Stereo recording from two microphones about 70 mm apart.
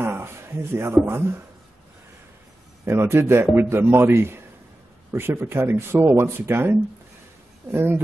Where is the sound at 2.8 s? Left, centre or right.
Right.